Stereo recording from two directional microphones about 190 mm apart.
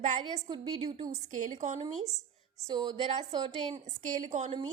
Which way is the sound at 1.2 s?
40° right (ahead or behind).